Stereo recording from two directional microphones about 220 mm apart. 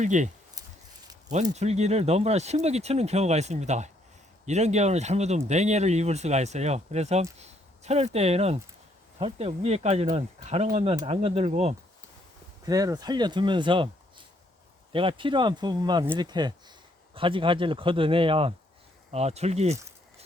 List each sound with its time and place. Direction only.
0.0 s speech: 35° right (ahead or behind)
1.3 s speech: 30° right (ahead or behind)
12.6 s speech: 15° right (ahead or behind)
14.9 s speech: 25° right (ahead or behind)